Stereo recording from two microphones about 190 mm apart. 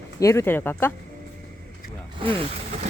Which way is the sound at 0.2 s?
15° left (ahead or behind).